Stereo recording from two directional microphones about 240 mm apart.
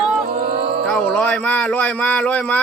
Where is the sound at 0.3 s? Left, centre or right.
Right.